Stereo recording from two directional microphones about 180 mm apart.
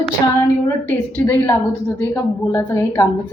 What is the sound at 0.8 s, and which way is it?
A woman's voice, 10° left (ahead or behind).